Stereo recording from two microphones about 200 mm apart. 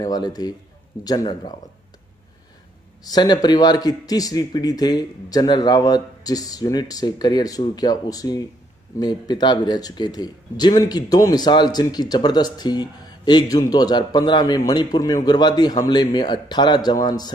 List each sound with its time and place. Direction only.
0.0 s speech: 20° left (ahead or behind)
3.0 s speech: 20° left (ahead or behind)